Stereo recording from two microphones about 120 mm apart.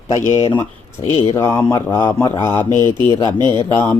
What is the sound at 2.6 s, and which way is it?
Speech, 35° right (ahead or behind).